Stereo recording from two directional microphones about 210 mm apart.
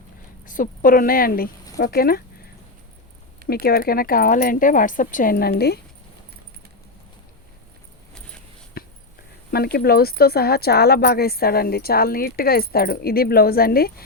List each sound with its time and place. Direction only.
0.4 s speech: 40° left (ahead or behind)
3.4 s speech: 45° left (ahead or behind)
8.8 s a sound: 45° left (ahead or behind)
9.5 s speech: 50° left (ahead or behind)